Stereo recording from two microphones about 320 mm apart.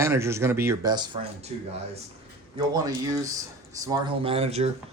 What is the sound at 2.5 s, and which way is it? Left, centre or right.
Speech, centre.